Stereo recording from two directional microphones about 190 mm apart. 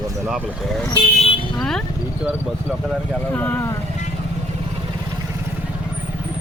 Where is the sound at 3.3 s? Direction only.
10° left (ahead or behind).